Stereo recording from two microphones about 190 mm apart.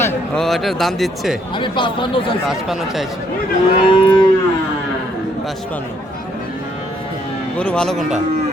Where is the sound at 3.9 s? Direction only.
25° left (ahead or behind).